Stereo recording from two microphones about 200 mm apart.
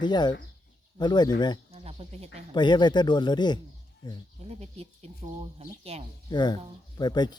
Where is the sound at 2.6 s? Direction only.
20° left (ahead or behind).